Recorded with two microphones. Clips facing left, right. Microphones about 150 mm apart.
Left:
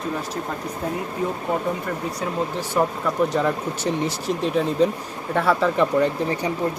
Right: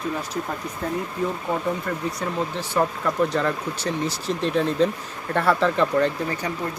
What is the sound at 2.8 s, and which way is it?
Speech, 10° left (ahead or behind).